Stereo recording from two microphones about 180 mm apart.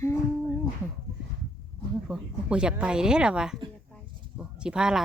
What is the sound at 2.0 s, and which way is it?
Speech, 5° right (ahead or behind).